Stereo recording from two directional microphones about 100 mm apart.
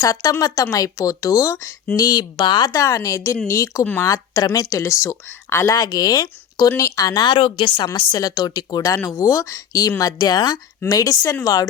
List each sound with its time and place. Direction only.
0.0 s speech: 40° left (ahead or behind)
2.3 s speech: 50° left (ahead or behind)
2.8 s speech: 30° left (ahead or behind)
5.7 s speech: 40° left (ahead or behind)